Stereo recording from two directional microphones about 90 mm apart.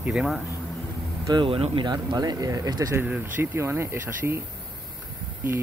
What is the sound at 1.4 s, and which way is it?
Speech, 75° right (ahead or behind).